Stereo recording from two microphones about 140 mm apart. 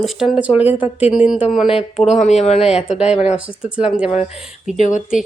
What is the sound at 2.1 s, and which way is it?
Speech, 55° left (ahead or behind).